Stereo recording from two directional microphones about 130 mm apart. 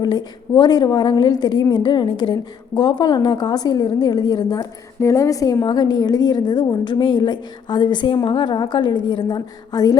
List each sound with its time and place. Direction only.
0.0 s a woman's voice: 35° left (ahead or behind)